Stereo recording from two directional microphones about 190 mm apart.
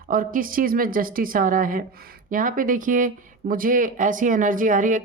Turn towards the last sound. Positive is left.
turn(degrees=-45)  # may be behind; listen again after turning